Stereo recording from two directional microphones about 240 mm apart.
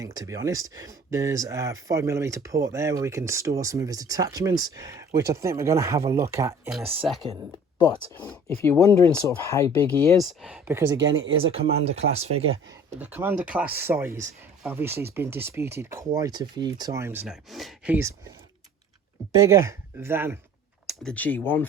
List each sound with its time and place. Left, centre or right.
0.0 s speech: centre
7.8 s speech: centre
10.2 s speech: centre
11.3 s speech: right
12.6 s speech: centre
19.4 s speech: centre
20.8 s speech: centre